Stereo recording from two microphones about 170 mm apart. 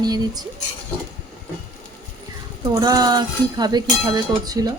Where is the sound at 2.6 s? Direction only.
20° right (ahead or behind).